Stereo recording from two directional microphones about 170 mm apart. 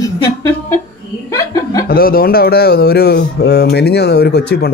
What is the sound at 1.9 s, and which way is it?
Speech, 60° left (ahead or behind).